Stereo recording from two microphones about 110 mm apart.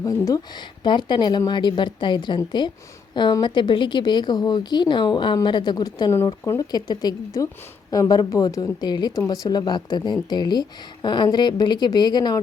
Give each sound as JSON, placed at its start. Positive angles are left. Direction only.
{"t": 0.0, "sound": "a woman's voice", "side_deg": 30}